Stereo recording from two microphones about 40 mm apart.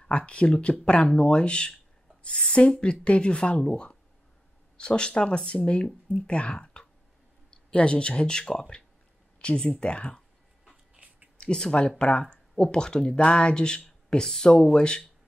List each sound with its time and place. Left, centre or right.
0.0 s speech: left
11.3 s speech: centre
14.1 s speech: centre